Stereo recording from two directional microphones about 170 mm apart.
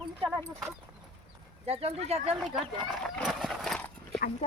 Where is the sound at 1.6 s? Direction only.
35° right (ahead or behind).